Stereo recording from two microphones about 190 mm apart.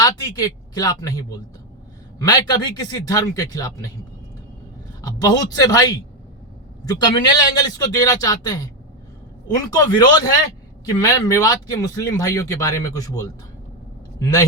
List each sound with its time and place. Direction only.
0.0 s a man's voice: 20° left (ahead or behind)
2.2 s a man's voice: 20° left (ahead or behind)
5.0 s a man's voice: 20° left (ahead or behind)